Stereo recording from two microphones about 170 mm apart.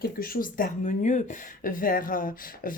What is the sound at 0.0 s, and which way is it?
Speech, 60° left (ahead or behind).